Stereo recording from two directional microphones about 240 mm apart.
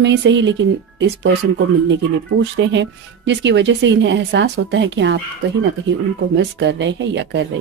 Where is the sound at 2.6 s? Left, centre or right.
Right.